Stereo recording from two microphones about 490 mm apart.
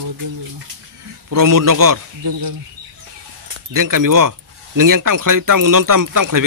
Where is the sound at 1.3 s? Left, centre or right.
Right.